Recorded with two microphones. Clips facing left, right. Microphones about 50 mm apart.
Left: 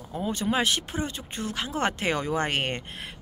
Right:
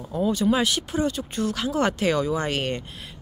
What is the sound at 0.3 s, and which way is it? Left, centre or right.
Speech, left.